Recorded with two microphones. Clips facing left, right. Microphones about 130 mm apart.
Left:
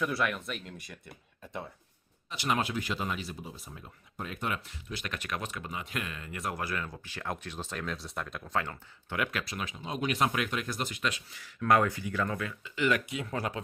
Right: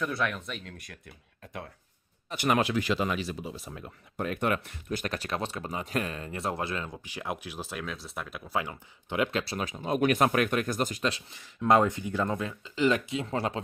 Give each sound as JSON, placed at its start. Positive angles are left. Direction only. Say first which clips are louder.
{"t": 0.0, "sound": "speech", "louder": "even", "side_deg": 0}
{"t": 2.3, "sound": "speech", "louder": "right 4 dB", "side_deg": -55}
{"t": 2.6, "sound": "speech", "louder": "right 6 dB", "side_deg": -85}
{"t": 9.1, "sound": "speech", "louder": "right 5 dB", "side_deg": -25}